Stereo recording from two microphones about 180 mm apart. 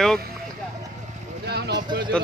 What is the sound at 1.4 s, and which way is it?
Vehicle, 65° right (ahead or behind).